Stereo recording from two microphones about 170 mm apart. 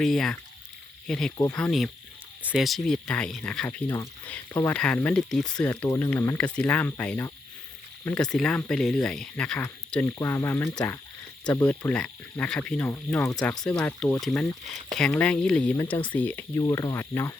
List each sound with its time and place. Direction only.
0.0 s speech: centre (ahead or behind)
3.8 s speech: 20° left (ahead or behind)
11.9 s speech: 5° left (ahead or behind)